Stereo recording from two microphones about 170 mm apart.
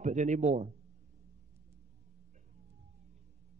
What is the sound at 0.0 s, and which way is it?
Speech, 45° right (ahead or behind).